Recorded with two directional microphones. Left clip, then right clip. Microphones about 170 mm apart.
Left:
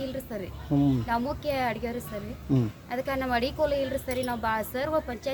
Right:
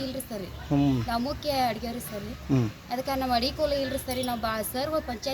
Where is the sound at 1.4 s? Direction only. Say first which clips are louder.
Right 1 dB; 40° left (ahead or behind).